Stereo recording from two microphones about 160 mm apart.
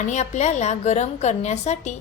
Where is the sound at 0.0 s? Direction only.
45° left (ahead or behind).